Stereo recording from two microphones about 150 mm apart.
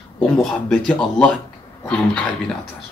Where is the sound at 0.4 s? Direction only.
5° left (ahead or behind).